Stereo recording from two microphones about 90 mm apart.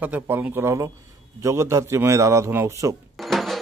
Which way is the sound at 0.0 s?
20° right (ahead or behind).